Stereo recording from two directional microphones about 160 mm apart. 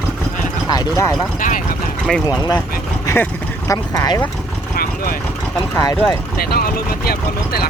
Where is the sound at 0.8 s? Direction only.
20° left (ahead or behind).